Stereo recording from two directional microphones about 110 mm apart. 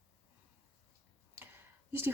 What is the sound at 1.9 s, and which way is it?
Speech, 20° right (ahead or behind).